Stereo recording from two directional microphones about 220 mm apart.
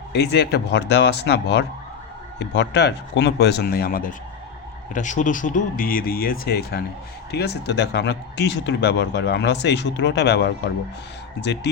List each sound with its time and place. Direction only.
0.1 s speech: 45° left (ahead or behind)